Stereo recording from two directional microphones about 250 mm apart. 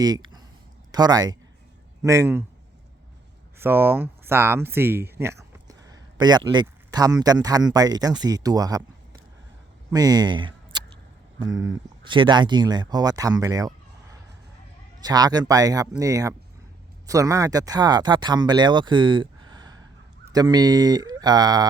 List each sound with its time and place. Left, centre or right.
0.0 s speech: centre
3.6 s speech: centre
9.9 s speech: centre